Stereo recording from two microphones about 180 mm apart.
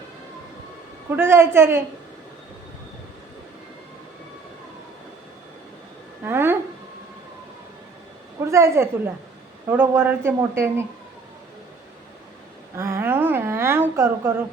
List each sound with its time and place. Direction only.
1.1 s speech: 15° right (ahead or behind)
6.2 s a sound: 10° right (ahead or behind)
8.4 s speech: 15° right (ahead or behind)
12.7 s speech: 15° right (ahead or behind)